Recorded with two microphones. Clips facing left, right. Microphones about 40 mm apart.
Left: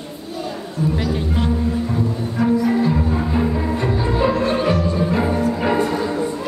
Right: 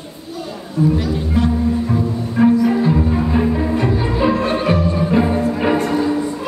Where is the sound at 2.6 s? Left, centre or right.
Centre.